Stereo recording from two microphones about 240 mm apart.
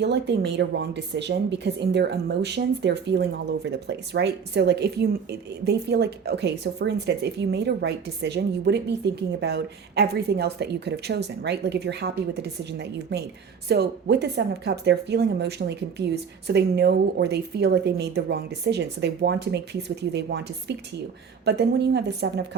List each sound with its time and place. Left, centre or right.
0.0 s a woman's voice: right